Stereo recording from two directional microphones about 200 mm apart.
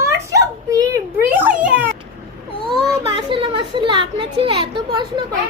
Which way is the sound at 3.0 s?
25° right (ahead or behind).